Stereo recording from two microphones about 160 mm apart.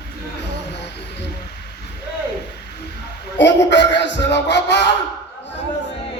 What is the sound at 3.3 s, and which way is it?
A man's voice, 90° left.